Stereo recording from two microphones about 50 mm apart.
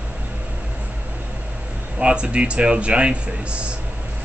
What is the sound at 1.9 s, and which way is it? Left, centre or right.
A man's voice, right.